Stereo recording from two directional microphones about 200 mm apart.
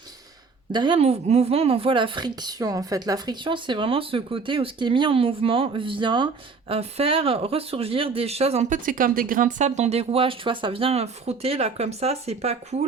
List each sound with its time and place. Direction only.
0.7 s speech: 25° right (ahead or behind)